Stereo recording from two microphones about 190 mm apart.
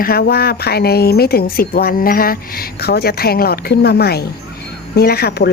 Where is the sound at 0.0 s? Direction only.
55° left (ahead or behind).